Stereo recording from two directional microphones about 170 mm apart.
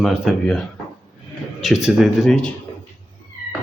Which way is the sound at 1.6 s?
5° right (ahead or behind).